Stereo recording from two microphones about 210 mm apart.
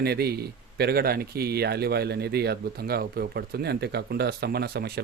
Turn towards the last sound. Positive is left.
turn(degrees=-50)  # may be behind; listen again after turning